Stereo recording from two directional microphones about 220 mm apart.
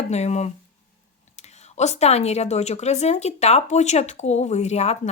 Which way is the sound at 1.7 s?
30° left (ahead or behind).